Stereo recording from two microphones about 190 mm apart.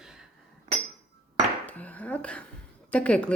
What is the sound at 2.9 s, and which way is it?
Speech, 5° left (ahead or behind).